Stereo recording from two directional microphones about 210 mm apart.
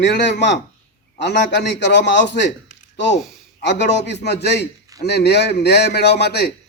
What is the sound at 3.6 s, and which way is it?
A man's voice, 55° left (ahead or behind).